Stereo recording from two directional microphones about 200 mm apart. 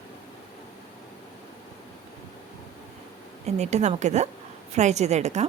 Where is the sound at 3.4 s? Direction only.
35° right (ahead or behind).